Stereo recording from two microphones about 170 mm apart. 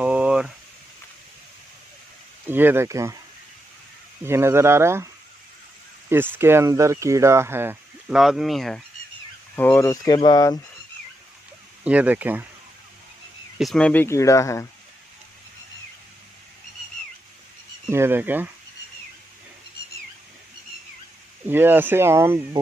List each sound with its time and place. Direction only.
0.0 s a sound: 5° right (ahead or behind)
2.4 s speech: 10° right (ahead or behind)
4.2 s speech: 15° right (ahead or behind)
8.2 s speech: centre (ahead or behind)
9.6 s speech: 15° left (ahead or behind)
11.8 s speech: 10° right (ahead or behind)
13.6 s speech: 5° left (ahead or behind)
17.8 s speech: 15° right (ahead or behind)
21.5 s speech: 10° right (ahead or behind)